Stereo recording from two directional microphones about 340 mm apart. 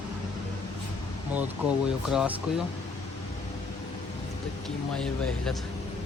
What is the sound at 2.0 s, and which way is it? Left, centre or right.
Speech, centre.